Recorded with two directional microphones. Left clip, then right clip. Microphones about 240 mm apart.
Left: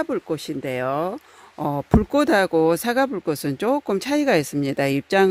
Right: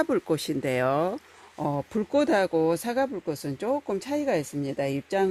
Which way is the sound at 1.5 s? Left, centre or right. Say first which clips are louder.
Left 7 dB; left.